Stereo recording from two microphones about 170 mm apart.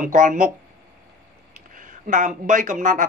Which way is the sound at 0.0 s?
50° right (ahead or behind).